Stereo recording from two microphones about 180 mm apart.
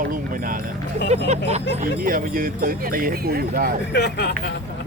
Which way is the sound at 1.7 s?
50° right (ahead or behind).